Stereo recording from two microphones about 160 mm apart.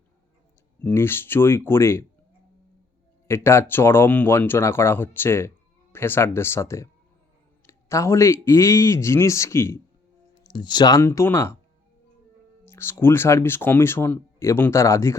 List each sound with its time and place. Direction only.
0.8 s speech: 10° left (ahead or behind)
3.2 s speech: 15° left (ahead or behind)
10.4 s speech: 30° left (ahead or behind)
12.6 s speech: 15° left (ahead or behind)